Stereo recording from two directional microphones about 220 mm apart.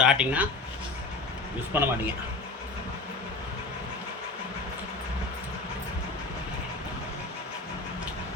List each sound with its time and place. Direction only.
0.0 s speech: 5° right (ahead or behind)
1.7 s a man's voice: 10° right (ahead or behind)